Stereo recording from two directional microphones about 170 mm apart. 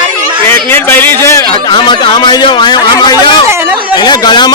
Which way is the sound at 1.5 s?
30° left (ahead or behind).